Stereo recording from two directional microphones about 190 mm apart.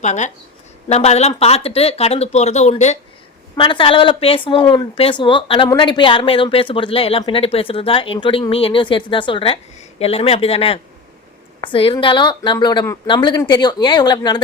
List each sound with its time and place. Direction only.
0.0 s speech: 40° left (ahead or behind); by 14.4 s 20° left (ahead or behind)